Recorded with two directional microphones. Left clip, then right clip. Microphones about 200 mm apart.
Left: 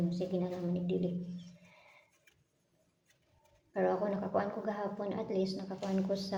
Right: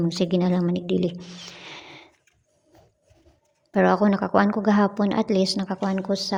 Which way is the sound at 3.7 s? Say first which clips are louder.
Right 12 dB; 55° right (ahead or behind).